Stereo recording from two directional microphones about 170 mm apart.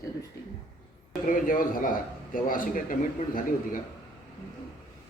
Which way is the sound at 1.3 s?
55° left (ahead or behind).